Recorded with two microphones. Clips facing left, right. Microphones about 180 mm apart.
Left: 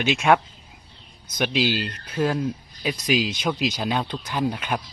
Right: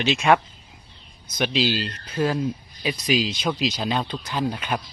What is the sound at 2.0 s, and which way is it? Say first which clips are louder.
Speech: even; centre (ahead or behind).